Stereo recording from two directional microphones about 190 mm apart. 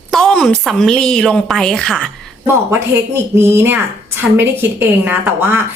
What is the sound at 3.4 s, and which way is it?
A woman's voice, 10° right (ahead or behind).